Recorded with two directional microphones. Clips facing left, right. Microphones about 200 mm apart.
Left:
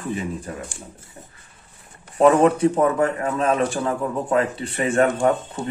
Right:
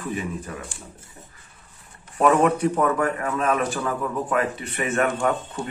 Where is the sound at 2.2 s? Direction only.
30° left (ahead or behind).